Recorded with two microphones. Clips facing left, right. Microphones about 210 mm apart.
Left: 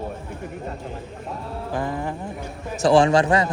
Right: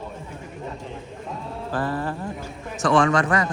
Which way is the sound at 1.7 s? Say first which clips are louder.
Right 1 dB; 15° left (ahead or behind).